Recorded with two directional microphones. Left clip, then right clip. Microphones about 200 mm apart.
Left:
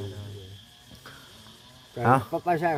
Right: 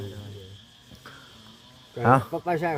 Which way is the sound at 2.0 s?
20° right (ahead or behind).